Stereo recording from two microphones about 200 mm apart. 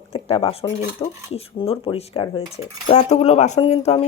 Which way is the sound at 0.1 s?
30° left (ahead or behind).